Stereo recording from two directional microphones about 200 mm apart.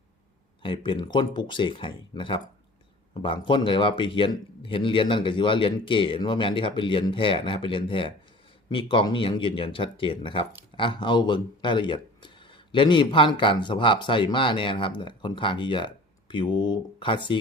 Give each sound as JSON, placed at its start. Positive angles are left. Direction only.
{"t": 0.6, "sound": "speech", "side_deg": 25}